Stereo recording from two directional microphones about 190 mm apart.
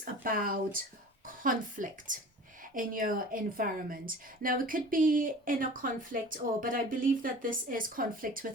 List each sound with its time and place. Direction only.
0.0 s speech: 50° right (ahead or behind)